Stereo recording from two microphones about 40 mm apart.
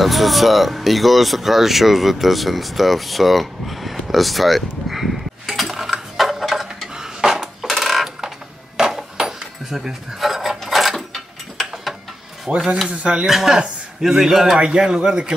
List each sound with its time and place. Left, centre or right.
0.0 s speech: centre
7.0 s dishes: centre
7.7 s a sound: centre
8.7 s a sound: centre
12.4 s speech: right
13.3 s a man's voice: centre
15.0 s speech: centre